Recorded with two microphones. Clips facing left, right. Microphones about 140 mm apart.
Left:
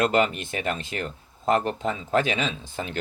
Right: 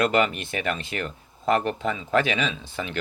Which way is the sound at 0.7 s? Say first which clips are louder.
Right 1 dB; 45° left (ahead or behind).